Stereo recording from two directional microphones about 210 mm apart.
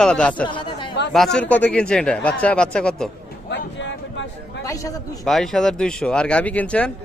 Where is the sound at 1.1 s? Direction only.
Centre (ahead or behind).